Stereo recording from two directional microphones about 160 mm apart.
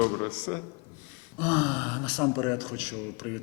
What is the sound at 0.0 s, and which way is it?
A man's voice, 10° left (ahead or behind).